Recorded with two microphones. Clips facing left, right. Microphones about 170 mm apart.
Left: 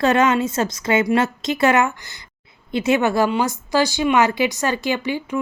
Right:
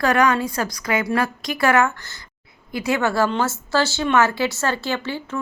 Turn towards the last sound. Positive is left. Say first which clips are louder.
# left 3 dB
turn(degrees=15)  # may be behind; listen again after turning